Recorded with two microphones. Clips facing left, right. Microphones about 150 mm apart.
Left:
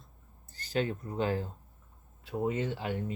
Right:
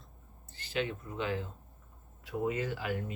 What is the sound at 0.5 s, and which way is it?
Speech, 40° left (ahead or behind).